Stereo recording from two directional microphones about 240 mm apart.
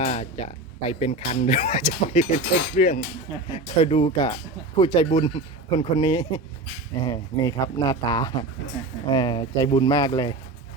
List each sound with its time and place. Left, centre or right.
0.0 s speech: left